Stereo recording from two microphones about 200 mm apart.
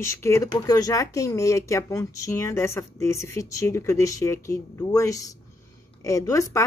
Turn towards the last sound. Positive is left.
turn(degrees=15)  # may be behind; listen again after turning